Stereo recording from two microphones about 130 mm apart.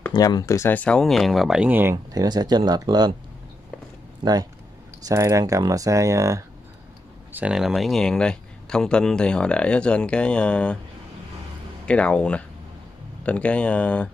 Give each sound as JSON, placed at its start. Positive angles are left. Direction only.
{"t": 0.1, "sound": "speech", "side_deg": 30}
{"t": 2.1, "sound": "speech", "side_deg": -30}
{"t": 4.2, "sound": "speech", "side_deg": -30}
{"t": 7.3, "sound": "speech", "side_deg": -5}
{"t": 11.8, "sound": "speech", "side_deg": 10}